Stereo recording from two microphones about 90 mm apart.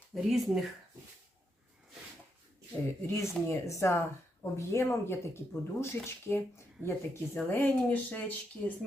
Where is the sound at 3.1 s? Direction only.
30° left (ahead or behind).